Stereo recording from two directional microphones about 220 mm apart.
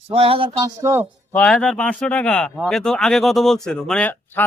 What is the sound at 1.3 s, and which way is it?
A man's voice, 5° left (ahead or behind).